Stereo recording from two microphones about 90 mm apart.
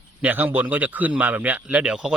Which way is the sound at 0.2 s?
20° right (ahead or behind).